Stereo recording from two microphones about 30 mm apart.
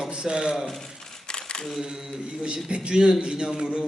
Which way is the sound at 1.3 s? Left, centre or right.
Left.